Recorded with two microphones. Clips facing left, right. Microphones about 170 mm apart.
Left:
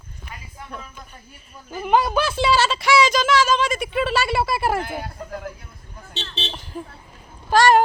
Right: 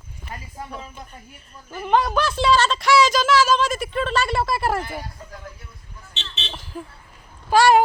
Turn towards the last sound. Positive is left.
turn(degrees=-10)  # may be behind; listen again after turning